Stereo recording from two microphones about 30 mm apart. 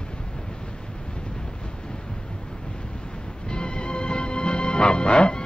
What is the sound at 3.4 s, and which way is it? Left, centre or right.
Music, left.